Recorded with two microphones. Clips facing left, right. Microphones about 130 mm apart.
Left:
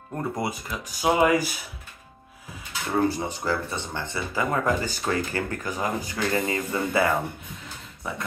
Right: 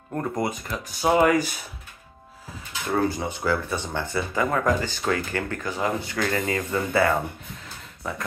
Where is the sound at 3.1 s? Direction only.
35° left (ahead or behind).